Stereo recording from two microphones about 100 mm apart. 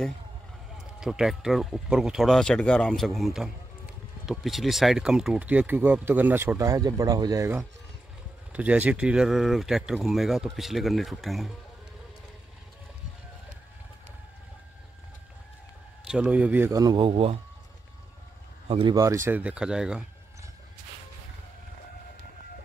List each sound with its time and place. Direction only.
0.7 s speech: 5° right (ahead or behind); by 6.8 s 25° right (ahead or behind)
6.8 s speech: 40° right (ahead or behind)
8.5 s speech: 15° right (ahead or behind)
16.1 s speech: 10° right (ahead or behind)
16.9 s speech: 65° right (ahead or behind)
18.7 s speech: 65° right (ahead or behind)
18.9 s speech: 30° right (ahead or behind)
19.3 s speech: 10° right (ahead or behind)